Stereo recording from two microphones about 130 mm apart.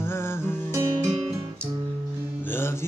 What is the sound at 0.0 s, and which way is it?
Music, 20° left (ahead or behind).